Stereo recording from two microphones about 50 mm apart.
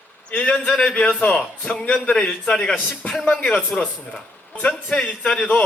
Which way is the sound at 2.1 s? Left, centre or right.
Centre.